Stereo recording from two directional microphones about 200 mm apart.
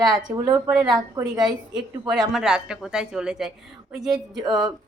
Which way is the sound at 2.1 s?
Centre (ahead or behind).